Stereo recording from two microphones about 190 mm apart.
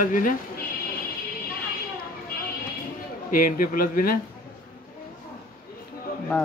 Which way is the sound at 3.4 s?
50° left (ahead or behind).